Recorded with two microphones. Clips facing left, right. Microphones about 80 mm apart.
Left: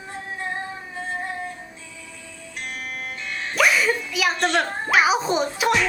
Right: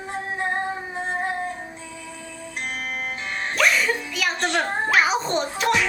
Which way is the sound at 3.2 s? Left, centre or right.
Right.